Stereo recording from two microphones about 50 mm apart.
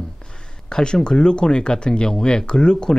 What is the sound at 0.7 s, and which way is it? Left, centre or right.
Speech, centre.